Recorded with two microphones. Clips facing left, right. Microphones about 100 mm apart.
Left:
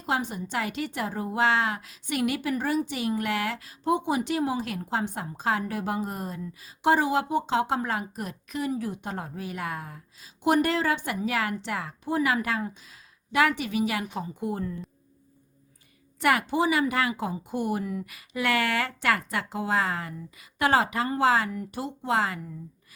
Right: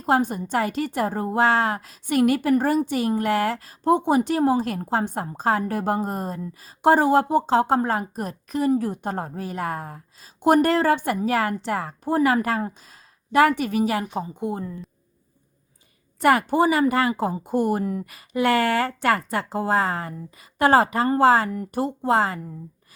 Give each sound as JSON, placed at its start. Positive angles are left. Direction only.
{"t": 0.0, "sound": "a woman's voice", "side_deg": -45}
{"t": 16.2, "sound": "a woman's voice", "side_deg": -40}